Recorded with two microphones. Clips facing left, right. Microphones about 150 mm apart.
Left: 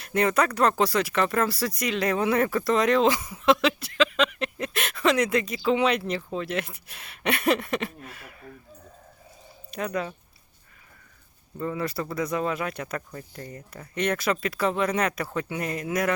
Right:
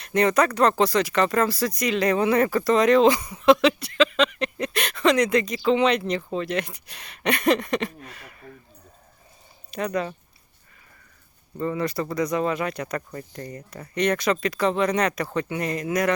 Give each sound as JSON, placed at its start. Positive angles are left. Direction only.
{"t": 0.0, "sound": "speech", "side_deg": 5}
{"t": 9.7, "sound": "speech", "side_deg": 0}
{"t": 11.6, "sound": "speech", "side_deg": 0}